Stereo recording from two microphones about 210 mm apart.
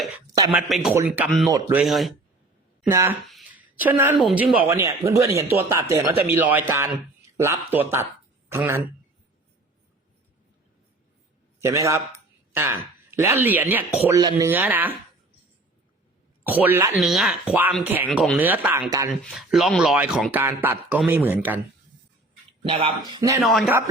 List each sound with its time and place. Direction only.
0.5 s speech: centre (ahead or behind)
1.5 s speech: 15° right (ahead or behind)
1.8 s speech: centre (ahead or behind)
2.9 s speech: 10° right (ahead or behind)
3.2 s a sound: 5° right (ahead or behind)
4.6 s speech: 10° right (ahead or behind)
11.6 s speech: 15° right (ahead or behind)
16.4 s speech: 10° right (ahead or behind)
19.2 s speech: centre (ahead or behind)
22.6 s speech: 25° right (ahead or behind)
23.4 s speech: centre (ahead or behind)